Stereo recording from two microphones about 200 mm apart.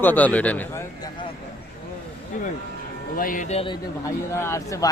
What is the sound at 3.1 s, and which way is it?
Speech, 45° left (ahead or behind).